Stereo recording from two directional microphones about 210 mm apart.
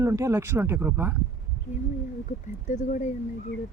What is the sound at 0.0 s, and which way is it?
Speech, 15° right (ahead or behind).